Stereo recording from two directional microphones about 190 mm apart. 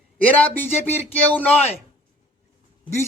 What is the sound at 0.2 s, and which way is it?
Speech, 10° left (ahead or behind).